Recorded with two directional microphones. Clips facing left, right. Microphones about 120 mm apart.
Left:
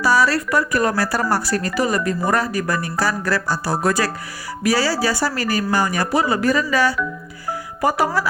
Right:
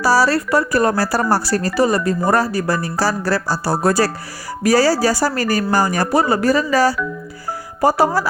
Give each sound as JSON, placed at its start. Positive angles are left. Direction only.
{"t": 0.0, "sound": "speech", "side_deg": -35}